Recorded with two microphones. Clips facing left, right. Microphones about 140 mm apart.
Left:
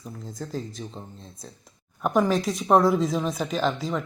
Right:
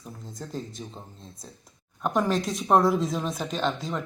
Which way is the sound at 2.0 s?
Centre (ahead or behind).